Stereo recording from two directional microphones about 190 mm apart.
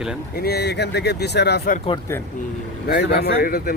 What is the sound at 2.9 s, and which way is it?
Speech, 55° left (ahead or behind).